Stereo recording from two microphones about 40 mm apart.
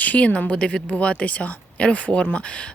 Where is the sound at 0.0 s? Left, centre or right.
Left.